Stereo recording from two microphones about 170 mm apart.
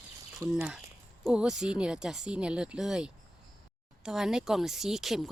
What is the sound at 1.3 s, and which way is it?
Speech, 5° right (ahead or behind).